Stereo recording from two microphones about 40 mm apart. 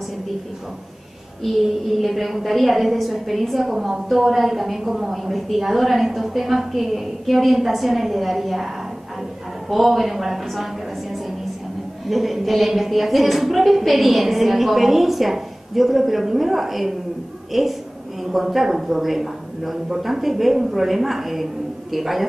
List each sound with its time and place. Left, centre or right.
1.4 s a woman's voice: centre